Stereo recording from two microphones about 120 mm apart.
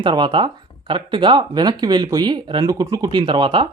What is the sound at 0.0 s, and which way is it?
Speech, 40° right (ahead or behind).